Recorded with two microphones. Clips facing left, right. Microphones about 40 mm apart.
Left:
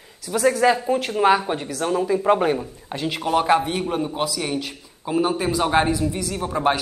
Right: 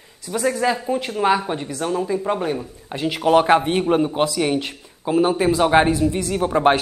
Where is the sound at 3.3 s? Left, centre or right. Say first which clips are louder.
Right 4 dB; right.